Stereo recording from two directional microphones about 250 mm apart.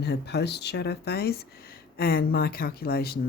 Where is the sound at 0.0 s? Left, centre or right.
Left.